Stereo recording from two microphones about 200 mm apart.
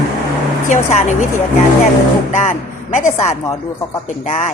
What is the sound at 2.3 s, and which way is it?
Speech, 40° left (ahead or behind).